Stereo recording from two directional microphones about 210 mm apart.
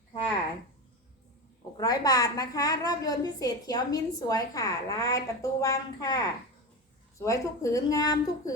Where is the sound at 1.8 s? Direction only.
15° left (ahead or behind).